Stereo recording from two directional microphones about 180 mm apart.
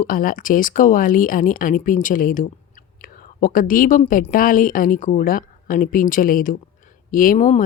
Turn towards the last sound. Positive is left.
turn(degrees=45)  # may be behind; listen again after turning